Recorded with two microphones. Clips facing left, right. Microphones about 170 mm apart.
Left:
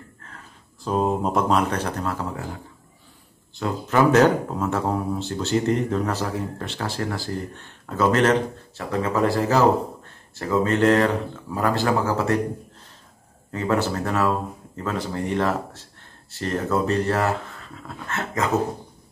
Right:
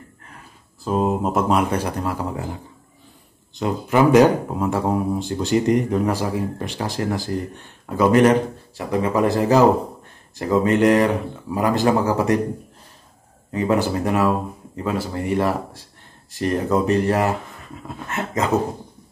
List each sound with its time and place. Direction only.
0.8 s speech: 5° right (ahead or behind)
3.5 s speech: 15° right (ahead or behind)
13.5 s speech: 15° right (ahead or behind)